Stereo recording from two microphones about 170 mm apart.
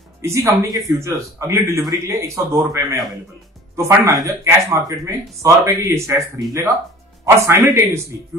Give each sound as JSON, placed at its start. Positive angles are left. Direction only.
{"t": 0.2, "sound": "a man's voice", "side_deg": -15}